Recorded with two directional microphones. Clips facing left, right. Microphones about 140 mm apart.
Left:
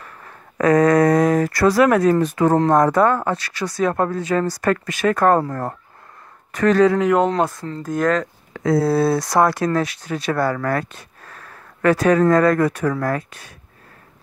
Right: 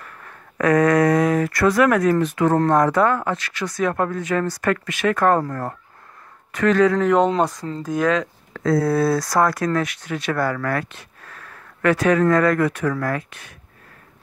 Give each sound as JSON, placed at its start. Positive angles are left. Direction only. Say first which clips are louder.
{"t": 0.0, "sound": "speech", "louder": "left 1 dB", "side_deg": 35}
{"t": 5.4, "sound": "speech", "louder": "left 2 dB", "side_deg": 25}
{"t": 7.0, "sound": "speech", "louder": "even", "side_deg": 10}
{"t": 8.5, "sound": "speech", "louder": "left 1 dB", "side_deg": 25}